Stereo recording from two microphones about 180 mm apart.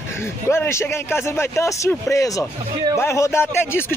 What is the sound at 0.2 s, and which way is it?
Speech, 15° left (ahead or behind).